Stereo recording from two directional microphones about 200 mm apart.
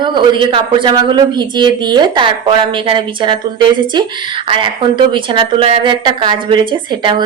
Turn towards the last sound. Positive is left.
turn(degrees=-20)  # may be behind; listen again after turning